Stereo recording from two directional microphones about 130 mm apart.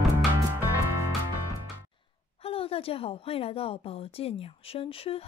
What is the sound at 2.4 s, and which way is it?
A woman's voice, 45° left (ahead or behind).